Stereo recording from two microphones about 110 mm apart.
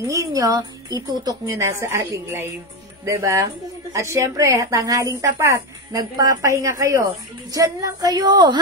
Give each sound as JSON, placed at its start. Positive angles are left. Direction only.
{"t": 0.0, "sound": "a woman's voice", "side_deg": -30}